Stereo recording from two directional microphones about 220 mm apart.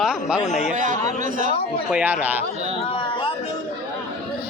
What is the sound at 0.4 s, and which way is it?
Speech, 35° left (ahead or behind).